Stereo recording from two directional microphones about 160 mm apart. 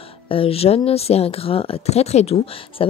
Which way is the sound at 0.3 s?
35° left (ahead or behind).